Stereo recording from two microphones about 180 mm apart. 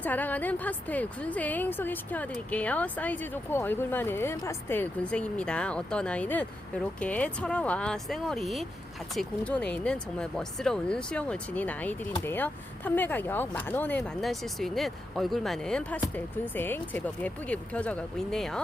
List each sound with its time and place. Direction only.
0.0 s a woman's voice: 10° left (ahead or behind)